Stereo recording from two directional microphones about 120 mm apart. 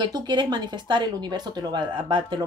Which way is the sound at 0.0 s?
40° right (ahead or behind).